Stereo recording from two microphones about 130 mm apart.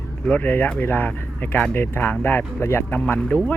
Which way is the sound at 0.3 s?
15° left (ahead or behind).